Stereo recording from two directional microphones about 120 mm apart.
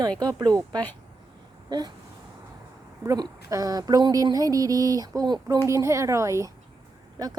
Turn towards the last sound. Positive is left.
turn(degrees=-35)  # may be behind; listen again after turning